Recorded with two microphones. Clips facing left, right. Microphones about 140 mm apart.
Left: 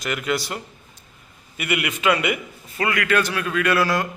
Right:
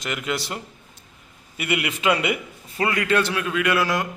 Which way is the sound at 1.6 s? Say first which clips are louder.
Left 1 dB; 25° right (ahead or behind).